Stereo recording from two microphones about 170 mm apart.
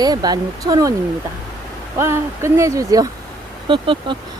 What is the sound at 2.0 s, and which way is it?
Speech, 15° right (ahead or behind).